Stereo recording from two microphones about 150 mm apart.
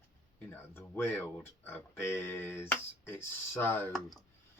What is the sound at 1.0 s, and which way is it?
Speech, 15° left (ahead or behind).